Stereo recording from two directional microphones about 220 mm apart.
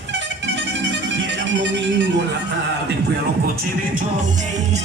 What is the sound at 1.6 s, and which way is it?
Music, 55° right (ahead or behind).